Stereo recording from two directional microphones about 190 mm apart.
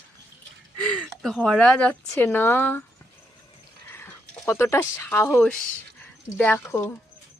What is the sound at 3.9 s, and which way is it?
Speech, 15° left (ahead or behind).